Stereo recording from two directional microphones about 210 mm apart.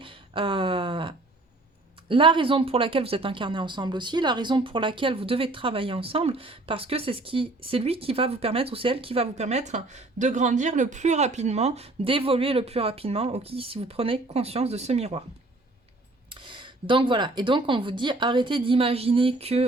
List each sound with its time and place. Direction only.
0.0 s a sound: 25° right (ahead or behind)
2.0 s speech: 25° right (ahead or behind)
16.3 s speech: 25° right (ahead or behind)